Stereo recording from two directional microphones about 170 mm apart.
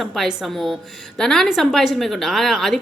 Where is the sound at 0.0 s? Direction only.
Centre (ahead or behind).